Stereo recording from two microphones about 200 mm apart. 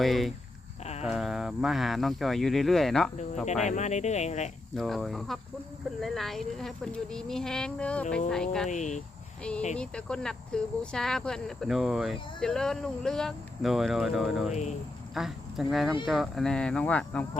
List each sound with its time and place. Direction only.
0.0 s speech: centre (ahead or behind)
3.4 s speech: 35° left (ahead or behind)
4.7 s speech: centre (ahead or behind)
8.7 s speech: 35° left (ahead or behind)
9.7 s speech: 5° left (ahead or behind)